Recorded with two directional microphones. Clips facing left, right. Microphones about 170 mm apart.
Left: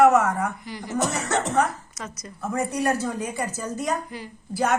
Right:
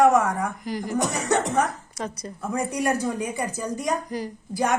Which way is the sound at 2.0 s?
35° right (ahead or behind).